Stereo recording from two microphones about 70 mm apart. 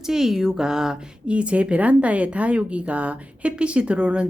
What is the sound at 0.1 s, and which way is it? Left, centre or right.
Speech, centre.